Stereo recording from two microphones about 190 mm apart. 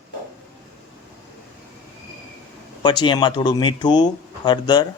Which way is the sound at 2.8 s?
25° left (ahead or behind).